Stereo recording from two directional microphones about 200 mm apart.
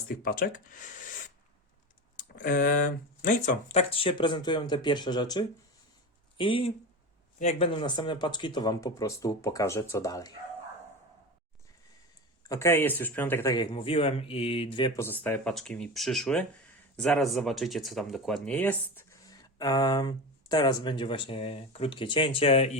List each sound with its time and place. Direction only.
0.2 s speech: 45° left (ahead or behind)
2.1 s speech: 40° left (ahead or behind); by 10.3 s 15° left (ahead or behind)
12.5 s speech: 15° left (ahead or behind)
14.9 s speech: 10° left (ahead or behind); by 22.8 s 30° left (ahead or behind)